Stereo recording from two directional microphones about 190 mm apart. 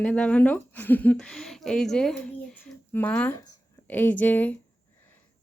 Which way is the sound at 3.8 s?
10° left (ahead or behind).